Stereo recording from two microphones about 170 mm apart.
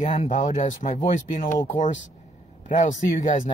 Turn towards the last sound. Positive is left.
turn(degrees=50)  # may be behind; listen again after turning